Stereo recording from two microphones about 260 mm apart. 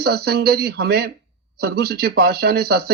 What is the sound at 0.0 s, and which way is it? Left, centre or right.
Speech, right.